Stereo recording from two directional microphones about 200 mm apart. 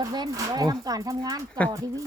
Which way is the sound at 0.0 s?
20° right (ahead or behind).